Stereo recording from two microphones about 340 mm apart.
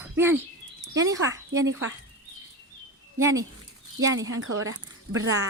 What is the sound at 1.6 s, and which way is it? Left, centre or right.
Speech, right.